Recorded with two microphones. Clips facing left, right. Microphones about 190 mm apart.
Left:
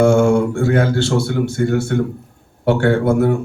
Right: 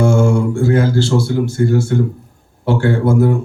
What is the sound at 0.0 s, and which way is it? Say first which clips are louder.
Speech: left 2 dB; 60° left (ahead or behind).